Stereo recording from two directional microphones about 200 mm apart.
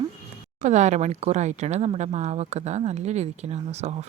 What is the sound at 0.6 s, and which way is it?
Speech, 35° right (ahead or behind).